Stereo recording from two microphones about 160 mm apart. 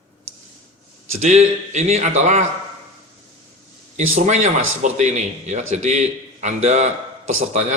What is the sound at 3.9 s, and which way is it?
Speech, 45° right (ahead or behind).